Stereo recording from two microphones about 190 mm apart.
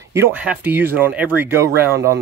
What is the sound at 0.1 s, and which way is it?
Speech, 10° right (ahead or behind).